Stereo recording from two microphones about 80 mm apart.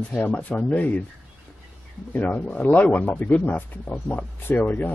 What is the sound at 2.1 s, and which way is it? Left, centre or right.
Speech, centre.